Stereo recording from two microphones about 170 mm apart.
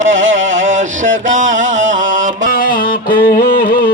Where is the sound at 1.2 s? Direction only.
50° right (ahead or behind).